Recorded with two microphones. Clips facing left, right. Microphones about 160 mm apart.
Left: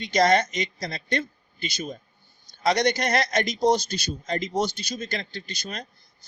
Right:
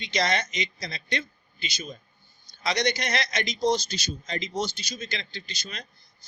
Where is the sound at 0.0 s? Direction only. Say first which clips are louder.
Left 7 dB; 50° left (ahead or behind).